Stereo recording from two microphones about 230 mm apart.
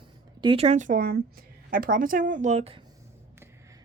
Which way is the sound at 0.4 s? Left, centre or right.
Right.